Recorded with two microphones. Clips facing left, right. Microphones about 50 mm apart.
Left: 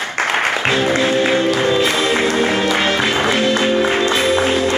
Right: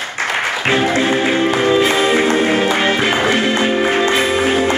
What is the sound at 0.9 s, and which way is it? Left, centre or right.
Music, right.